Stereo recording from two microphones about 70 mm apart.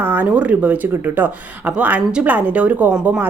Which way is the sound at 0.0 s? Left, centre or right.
Right.